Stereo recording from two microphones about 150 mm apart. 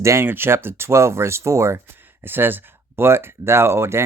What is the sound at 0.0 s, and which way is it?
Speech, 15° right (ahead or behind).